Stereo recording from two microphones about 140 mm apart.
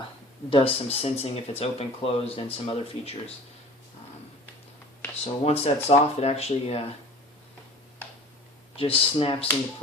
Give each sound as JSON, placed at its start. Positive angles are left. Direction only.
{"t": 0.5, "sound": "speech", "side_deg": 45}
{"t": 5.2, "sound": "speech", "side_deg": 50}
{"t": 8.7, "sound": "speech", "side_deg": 40}